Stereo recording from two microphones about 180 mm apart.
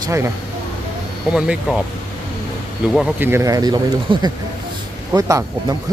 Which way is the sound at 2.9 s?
10° right (ahead or behind).